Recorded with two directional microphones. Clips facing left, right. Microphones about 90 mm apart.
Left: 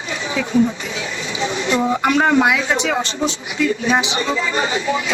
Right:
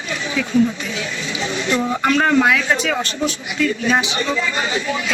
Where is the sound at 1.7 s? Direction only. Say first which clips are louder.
Left 1 dB; 20° left (ahead or behind).